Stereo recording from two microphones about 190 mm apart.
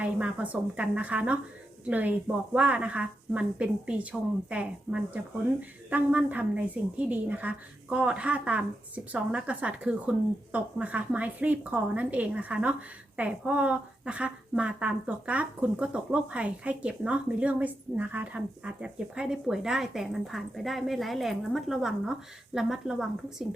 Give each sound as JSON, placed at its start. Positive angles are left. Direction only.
{"t": 0.0, "sound": "a woman's voice", "side_deg": -5}